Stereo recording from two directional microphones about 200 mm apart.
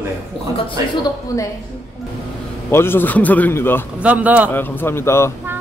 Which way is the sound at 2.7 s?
10° left (ahead or behind).